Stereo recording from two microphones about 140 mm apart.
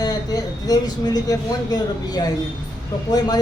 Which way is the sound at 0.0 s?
25° left (ahead or behind).